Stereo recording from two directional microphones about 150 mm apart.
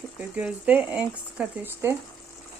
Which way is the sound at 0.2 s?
10° right (ahead or behind).